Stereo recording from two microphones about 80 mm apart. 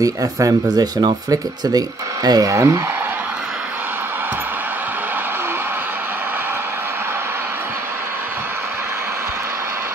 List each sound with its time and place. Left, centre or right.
0.0 s speech: right
2.5 s speech: right